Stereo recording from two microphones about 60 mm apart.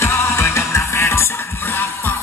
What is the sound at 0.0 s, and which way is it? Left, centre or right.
Music, left.